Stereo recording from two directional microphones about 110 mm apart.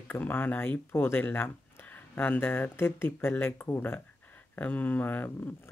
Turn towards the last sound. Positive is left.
turn(degrees=20)  # may be behind; listen again after turning